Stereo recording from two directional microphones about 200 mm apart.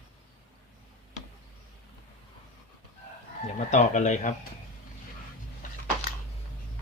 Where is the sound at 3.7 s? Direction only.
35° left (ahead or behind).